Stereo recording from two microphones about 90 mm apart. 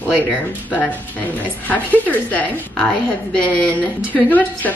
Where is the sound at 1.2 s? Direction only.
20° left (ahead or behind).